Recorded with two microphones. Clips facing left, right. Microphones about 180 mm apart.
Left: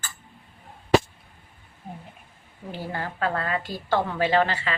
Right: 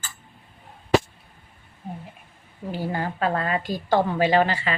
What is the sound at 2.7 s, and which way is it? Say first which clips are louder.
A woman's voice: right 4 dB; 15° right (ahead or behind).